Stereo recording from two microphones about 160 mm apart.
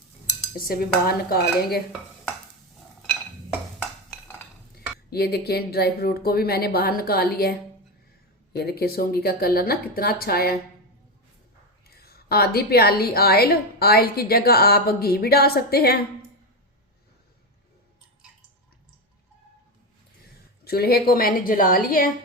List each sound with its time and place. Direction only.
0.5 s a woman's voice: 65° left (ahead or behind)
5.1 s a woman's voice: 80° left
11.9 s a woman's voice: 75° left (ahead or behind)
20.7 s a woman's voice: 75° left (ahead or behind)